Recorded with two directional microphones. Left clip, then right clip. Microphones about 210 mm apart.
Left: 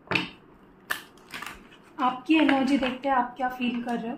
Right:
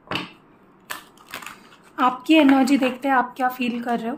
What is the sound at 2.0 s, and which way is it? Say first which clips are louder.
A woman's voice: right 6 dB; 55° right (ahead or behind).